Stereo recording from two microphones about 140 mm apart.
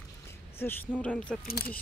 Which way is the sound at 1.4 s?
90° left.